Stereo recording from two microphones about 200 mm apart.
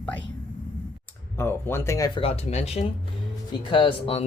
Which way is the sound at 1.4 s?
10° left (ahead or behind).